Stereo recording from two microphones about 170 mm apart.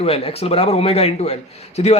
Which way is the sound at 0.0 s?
35° left (ahead or behind).